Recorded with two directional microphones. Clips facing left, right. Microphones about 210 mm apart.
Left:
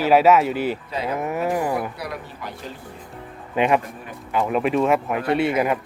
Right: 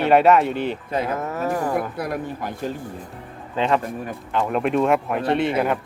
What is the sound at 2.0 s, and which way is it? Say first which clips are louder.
Speech: right 6 dB; 50° right (ahead or behind).